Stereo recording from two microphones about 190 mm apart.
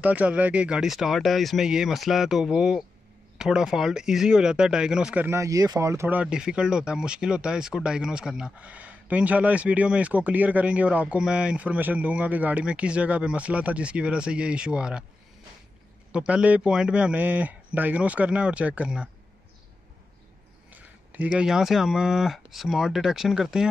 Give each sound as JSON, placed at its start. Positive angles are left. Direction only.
{"t": 0.0, "sound": "speech", "side_deg": -10}
{"t": 16.1, "sound": "speech", "side_deg": -5}
{"t": 20.7, "sound": "speech", "side_deg": -10}